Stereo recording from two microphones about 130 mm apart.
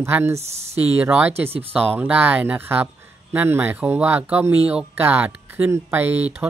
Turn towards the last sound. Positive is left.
turn(degrees=-15)  # may be behind; listen again after turning